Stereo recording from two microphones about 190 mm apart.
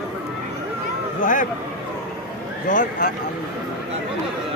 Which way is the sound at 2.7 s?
40° left (ahead or behind).